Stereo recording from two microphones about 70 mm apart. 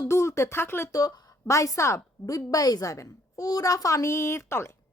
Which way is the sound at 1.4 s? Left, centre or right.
Left.